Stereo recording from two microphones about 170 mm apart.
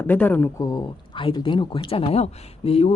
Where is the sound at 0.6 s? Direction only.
30° left (ahead or behind).